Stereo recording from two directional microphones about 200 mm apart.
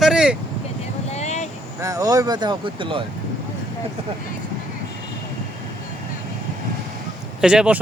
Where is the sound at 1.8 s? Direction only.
15° right (ahead or behind).